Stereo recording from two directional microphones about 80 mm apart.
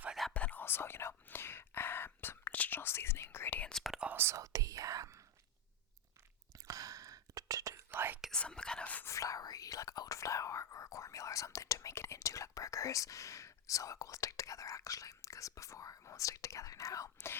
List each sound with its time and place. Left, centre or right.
0.1 s whispering: centre
0.3 s whispering: centre
0.6 s whispering: left
3.6 s whispering: centre
4.1 s whispering: right
4.4 s whispering: right
6.7 s whispering: right
7.9 s whispering: right
8.3 s whispering: centre
9.0 s whispering: left